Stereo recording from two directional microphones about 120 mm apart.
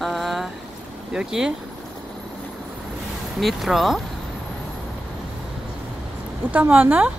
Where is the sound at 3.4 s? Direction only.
Centre (ahead or behind).